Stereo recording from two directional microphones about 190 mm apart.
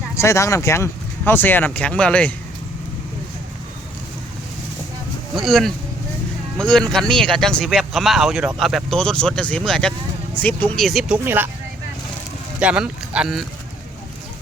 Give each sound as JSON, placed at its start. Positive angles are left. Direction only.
{"t": 0.2, "sound": "speech", "side_deg": 15}
{"t": 5.3, "sound": "speech", "side_deg": 0}
{"t": 12.5, "sound": "speech", "side_deg": -5}